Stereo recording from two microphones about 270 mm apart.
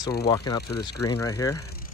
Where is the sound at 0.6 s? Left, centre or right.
Left.